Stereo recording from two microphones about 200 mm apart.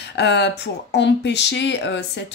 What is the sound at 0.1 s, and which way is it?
Speech, 60° left (ahead or behind).